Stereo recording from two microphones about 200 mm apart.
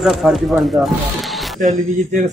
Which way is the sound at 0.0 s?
Centre (ahead or behind).